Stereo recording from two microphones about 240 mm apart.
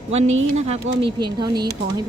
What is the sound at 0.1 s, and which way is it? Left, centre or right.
A woman's voice, right.